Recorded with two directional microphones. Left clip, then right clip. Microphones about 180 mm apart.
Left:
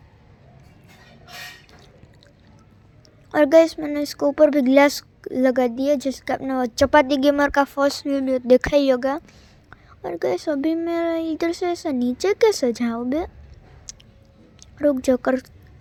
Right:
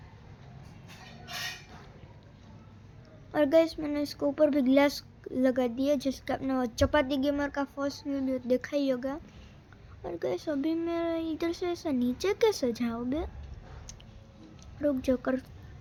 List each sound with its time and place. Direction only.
3.3 s speech: 40° left (ahead or behind)
9.2 s speech: 35° left (ahead or behind)
13.9 s a sound: 35° left (ahead or behind)
14.6 s a woman's voice: 35° left (ahead or behind)